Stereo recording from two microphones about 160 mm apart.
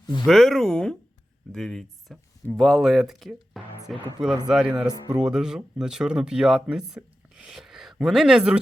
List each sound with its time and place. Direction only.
0.0 s speech: 25° left (ahead or behind)
0.3 s speech: centre (ahead or behind)